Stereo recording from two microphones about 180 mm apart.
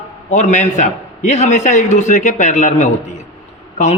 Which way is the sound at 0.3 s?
40° left (ahead or behind).